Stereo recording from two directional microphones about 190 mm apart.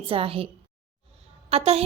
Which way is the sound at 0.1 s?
30° right (ahead or behind).